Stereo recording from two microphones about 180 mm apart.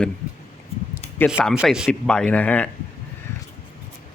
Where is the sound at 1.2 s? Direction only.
5° right (ahead or behind).